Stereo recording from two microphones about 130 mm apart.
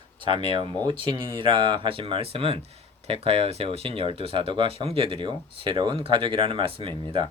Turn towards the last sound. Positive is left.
turn(degrees=-45)  # may be behind; listen again after turning